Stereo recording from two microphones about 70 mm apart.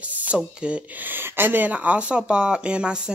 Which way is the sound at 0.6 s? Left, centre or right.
Centre.